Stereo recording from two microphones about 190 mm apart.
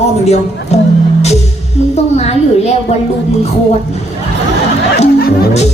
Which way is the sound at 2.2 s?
35° left (ahead or behind).